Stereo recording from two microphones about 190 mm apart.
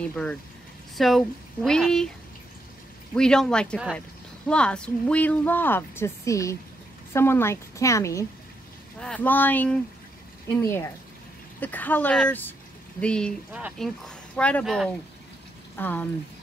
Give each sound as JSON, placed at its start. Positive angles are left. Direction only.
{"t": 0.0, "sound": "speech", "side_deg": 5}
{"t": 3.2, "sound": "speech", "side_deg": 5}
{"t": 13.5, "sound": "speech", "side_deg": -5}